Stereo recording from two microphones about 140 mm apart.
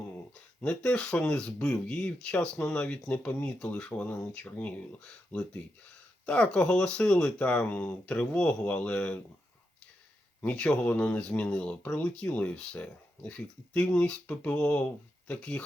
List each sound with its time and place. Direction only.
0.6 s speech: 5° left (ahead or behind)
10.4 s speech: 10° left (ahead or behind)